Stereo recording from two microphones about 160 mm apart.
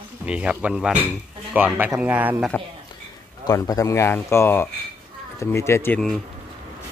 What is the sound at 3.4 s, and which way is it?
Speech, 20° left (ahead or behind).